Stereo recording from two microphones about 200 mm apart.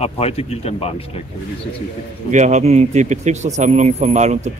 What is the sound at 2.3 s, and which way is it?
Speech, 35° right (ahead or behind).